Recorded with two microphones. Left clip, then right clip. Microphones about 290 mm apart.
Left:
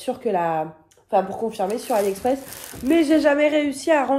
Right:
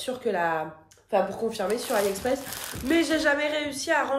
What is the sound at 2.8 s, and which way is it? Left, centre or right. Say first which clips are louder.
Speech: left 6 dB; centre.